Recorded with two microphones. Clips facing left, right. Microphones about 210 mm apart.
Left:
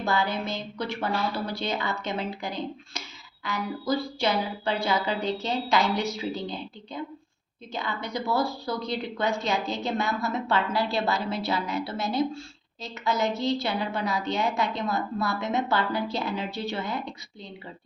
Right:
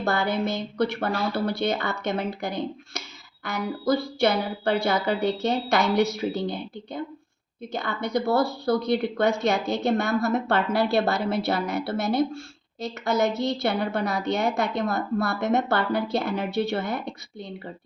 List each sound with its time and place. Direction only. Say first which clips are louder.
0.0 s a woman's voice: right 3 dB; 60° right (ahead or behind)